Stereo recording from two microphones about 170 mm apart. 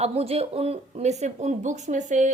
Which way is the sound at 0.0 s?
40° right (ahead or behind).